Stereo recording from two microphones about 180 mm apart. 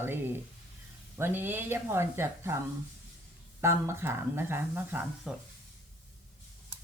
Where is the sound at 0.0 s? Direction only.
10° right (ahead or behind).